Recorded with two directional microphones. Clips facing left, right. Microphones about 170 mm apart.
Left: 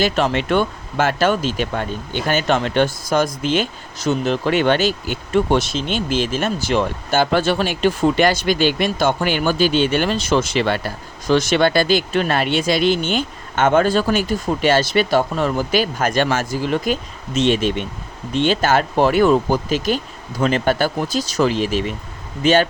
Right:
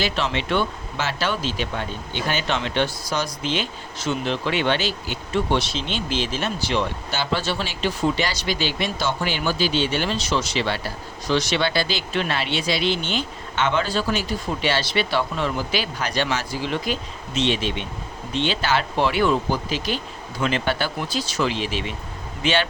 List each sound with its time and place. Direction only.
0.0 s speech: 50° left (ahead or behind)